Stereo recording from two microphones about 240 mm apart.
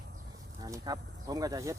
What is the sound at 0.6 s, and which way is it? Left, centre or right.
Speech, centre.